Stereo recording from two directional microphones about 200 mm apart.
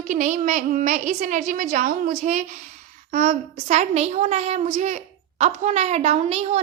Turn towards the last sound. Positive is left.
turn(degrees=-30)  # may be behind; listen again after turning